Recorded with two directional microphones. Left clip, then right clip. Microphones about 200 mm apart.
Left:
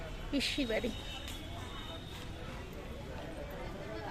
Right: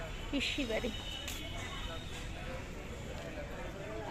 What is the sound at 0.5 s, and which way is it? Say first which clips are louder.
Speech: left 1 dB; 20° left (ahead or behind).